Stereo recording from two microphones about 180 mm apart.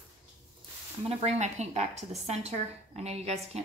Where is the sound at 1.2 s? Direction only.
40° right (ahead or behind).